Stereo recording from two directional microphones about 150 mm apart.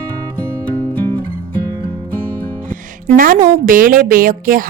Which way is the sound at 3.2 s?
65° right (ahead or behind).